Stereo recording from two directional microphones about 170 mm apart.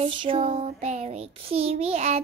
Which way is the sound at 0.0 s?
30° right (ahead or behind).